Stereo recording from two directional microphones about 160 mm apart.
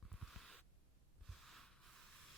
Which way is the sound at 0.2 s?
Centre (ahead or behind).